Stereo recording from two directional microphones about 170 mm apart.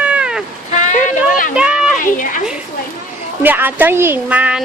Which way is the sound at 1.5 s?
5° right (ahead or behind).